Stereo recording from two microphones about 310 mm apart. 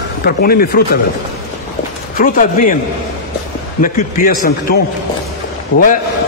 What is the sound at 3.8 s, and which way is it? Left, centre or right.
Speech, left.